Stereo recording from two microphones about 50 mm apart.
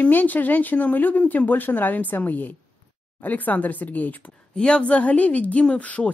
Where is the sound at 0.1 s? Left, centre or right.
Left.